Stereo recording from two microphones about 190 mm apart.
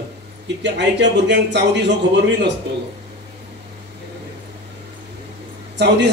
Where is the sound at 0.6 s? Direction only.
65° right (ahead or behind).